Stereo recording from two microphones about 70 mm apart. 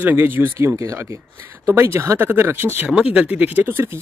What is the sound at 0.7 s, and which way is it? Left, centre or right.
Speech, right.